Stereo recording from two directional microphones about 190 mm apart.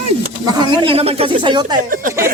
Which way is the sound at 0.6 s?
30° right (ahead or behind).